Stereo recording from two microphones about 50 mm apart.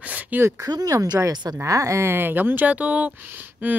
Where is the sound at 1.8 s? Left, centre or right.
Right.